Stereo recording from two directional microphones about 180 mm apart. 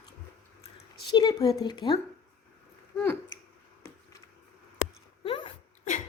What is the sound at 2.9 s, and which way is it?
Speech, 10° left (ahead or behind).